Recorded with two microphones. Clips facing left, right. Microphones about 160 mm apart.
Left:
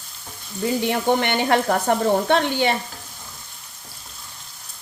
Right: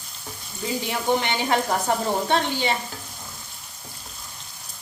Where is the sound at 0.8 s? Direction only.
60° left (ahead or behind).